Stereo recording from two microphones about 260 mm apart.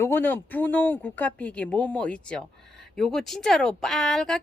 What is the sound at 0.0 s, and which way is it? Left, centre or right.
Speech, centre.